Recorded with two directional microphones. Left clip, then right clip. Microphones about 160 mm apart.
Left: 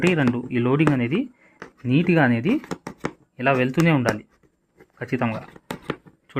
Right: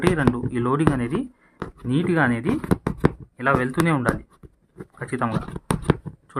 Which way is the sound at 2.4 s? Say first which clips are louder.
Left 2 dB; 30° right (ahead or behind).